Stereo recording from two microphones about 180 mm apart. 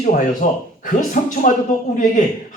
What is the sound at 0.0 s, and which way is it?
A man's voice, 50° left (ahead or behind).